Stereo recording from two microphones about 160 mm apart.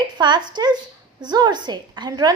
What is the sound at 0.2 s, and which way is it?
A woman's voice, 30° right (ahead or behind).